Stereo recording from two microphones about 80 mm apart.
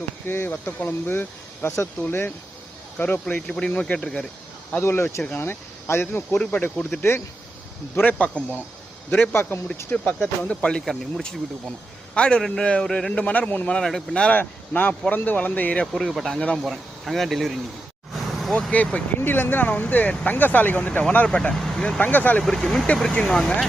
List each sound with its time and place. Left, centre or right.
0.3 s speech: left; by 4.3 s centre
4.8 s speech: left
6.3 s speech: centre
7.9 s speech: centre
10.4 s a man's voice: centre
14.3 s speech: left
15.9 s speech: centre
18.1 s vehicle: centre
18.7 s speech: centre
21.5 s speech: centre
21.8 s speech: centre
22.4 s speech: centre